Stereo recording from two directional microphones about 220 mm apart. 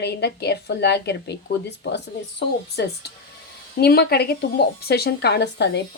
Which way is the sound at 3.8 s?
45° left (ahead or behind).